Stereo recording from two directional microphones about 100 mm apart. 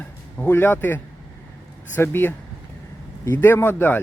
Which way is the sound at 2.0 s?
20° left (ahead or behind).